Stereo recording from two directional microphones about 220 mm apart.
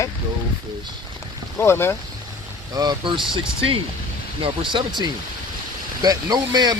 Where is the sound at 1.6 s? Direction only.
10° left (ahead or behind).